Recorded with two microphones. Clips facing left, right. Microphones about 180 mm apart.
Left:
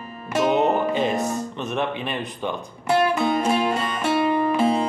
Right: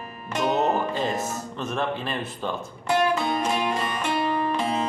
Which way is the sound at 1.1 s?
Centre (ahead or behind).